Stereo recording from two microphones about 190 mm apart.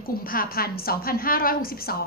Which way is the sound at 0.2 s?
50° left (ahead or behind).